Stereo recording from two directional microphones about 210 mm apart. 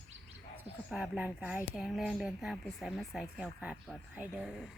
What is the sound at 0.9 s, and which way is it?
Speech, 5° right (ahead or behind).